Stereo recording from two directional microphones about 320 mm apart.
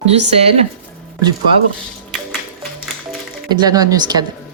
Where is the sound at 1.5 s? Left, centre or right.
Centre.